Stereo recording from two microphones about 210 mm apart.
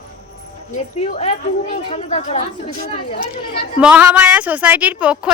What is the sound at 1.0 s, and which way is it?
Speech, 30° left (ahead or behind).